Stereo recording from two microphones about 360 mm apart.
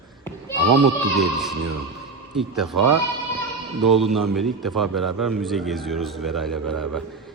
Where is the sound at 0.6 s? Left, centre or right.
Right.